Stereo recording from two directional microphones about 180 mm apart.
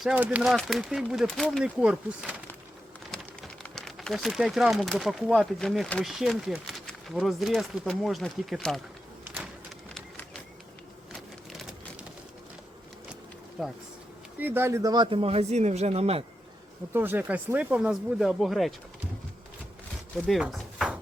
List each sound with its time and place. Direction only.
0.0 s speech: 5° right (ahead or behind)
3.6 s speech: centre (ahead or behind)
9.9 s a sound: 5° left (ahead or behind)
13.6 s speech: 5° right (ahead or behind); by 16.2 s 35° right (ahead or behind)
16.9 s speech: 10° right (ahead or behind)
20.1 s a sound: centre (ahead or behind)